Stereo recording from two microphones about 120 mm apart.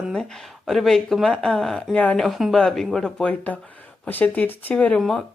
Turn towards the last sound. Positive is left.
turn(degrees=10)  # may be behind; listen again after turning